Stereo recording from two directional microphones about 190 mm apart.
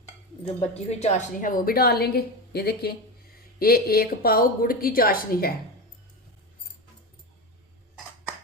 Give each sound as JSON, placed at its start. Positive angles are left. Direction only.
{"t": 0.4, "sound": "a woman's voice", "side_deg": 35}